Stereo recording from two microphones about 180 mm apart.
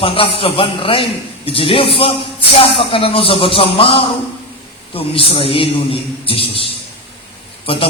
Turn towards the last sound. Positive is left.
turn(degrees=30)  # may be behind; listen again after turning